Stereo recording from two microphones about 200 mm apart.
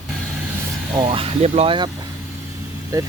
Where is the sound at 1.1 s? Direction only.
30° right (ahead or behind).